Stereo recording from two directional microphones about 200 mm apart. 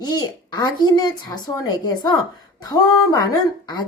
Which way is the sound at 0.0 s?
20° left (ahead or behind).